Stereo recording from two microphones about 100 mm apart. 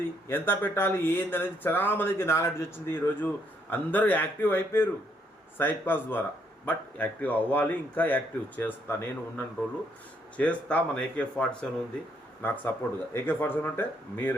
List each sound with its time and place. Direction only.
0.3 s a man's voice: 20° left (ahead or behind)